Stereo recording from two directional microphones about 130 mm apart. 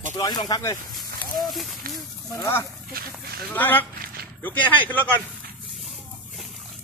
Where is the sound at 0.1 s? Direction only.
30° left (ahead or behind).